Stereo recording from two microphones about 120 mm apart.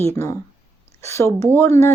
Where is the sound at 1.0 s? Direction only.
25° left (ahead or behind).